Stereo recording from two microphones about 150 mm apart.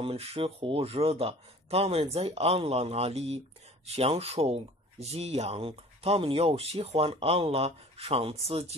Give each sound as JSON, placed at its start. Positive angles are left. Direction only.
{"t": 0.0, "sound": "speech", "side_deg": -40}